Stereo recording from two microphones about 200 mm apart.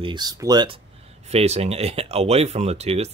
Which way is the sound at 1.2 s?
35° right (ahead or behind).